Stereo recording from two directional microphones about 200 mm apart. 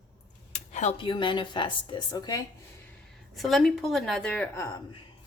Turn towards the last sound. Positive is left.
turn(degrees=10)  # may be behind; listen again after turning